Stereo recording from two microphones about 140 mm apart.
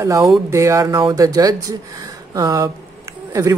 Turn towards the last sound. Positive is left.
turn(degrees=-25)  # may be behind; listen again after turning